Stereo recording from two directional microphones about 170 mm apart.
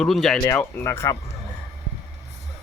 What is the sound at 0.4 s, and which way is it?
Speech, 15° left (ahead or behind).